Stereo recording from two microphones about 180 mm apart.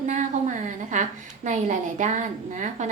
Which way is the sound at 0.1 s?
45° right (ahead or behind).